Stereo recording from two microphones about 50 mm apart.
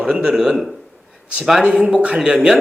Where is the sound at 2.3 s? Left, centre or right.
Centre.